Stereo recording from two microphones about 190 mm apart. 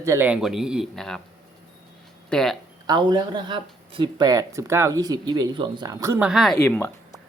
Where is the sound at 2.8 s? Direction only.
25° right (ahead or behind); by 6.6 s centre (ahead or behind).